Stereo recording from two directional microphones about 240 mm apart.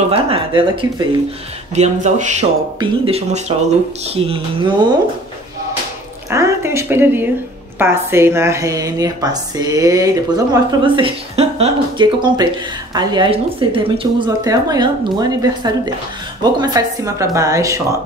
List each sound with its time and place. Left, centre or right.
0.1 s speech: right
6.3 s a woman's voice: centre